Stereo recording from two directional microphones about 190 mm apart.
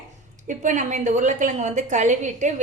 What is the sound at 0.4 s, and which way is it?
A woman's voice, 40° right (ahead or behind).